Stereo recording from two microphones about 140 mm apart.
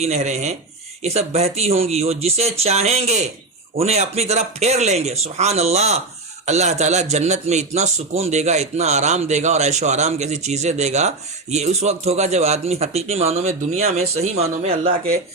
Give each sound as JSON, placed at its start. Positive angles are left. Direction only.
{"t": 0.0, "sound": "a man's voice", "side_deg": -50}